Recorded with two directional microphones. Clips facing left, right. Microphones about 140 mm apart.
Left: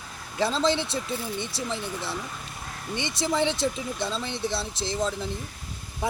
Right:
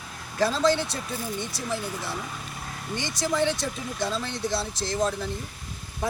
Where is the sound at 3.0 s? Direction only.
25° left (ahead or behind).